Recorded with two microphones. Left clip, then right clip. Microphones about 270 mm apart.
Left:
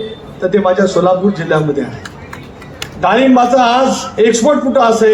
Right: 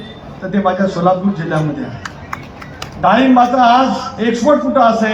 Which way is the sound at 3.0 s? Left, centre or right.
Left.